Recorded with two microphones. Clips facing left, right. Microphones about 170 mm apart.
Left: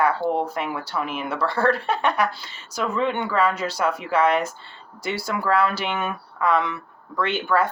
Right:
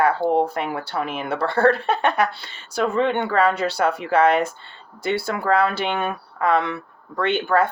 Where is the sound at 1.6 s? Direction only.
25° right (ahead or behind).